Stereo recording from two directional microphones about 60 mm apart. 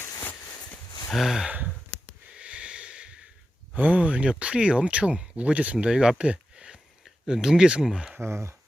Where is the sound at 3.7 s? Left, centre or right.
Right.